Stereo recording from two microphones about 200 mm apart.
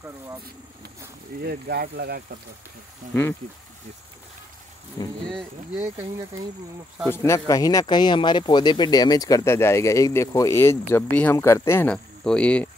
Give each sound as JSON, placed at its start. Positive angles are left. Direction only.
{"t": 1.4, "sound": "speech", "side_deg": -50}
{"t": 3.1, "sound": "speech", "side_deg": 10}
{"t": 5.0, "sound": "speech", "side_deg": 20}
{"t": 5.8, "sound": "speech", "side_deg": -10}
{"t": 7.1, "sound": "speech", "side_deg": 15}